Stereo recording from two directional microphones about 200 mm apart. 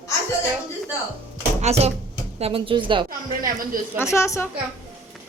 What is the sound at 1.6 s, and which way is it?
Speech, 35° right (ahead or behind).